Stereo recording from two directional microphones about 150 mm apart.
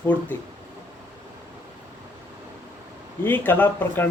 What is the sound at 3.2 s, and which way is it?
Speech, 15° left (ahead or behind).